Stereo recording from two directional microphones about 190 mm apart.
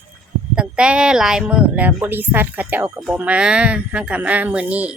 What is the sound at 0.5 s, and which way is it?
Speech, 5° right (ahead or behind).